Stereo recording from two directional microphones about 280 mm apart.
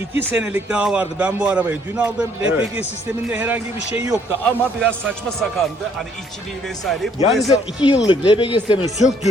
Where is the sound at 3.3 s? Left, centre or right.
Centre.